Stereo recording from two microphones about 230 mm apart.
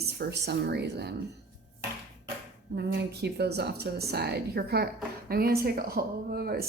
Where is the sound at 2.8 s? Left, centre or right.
Right.